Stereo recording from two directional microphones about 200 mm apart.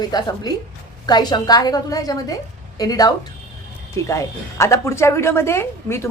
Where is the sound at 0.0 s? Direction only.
20° left (ahead or behind).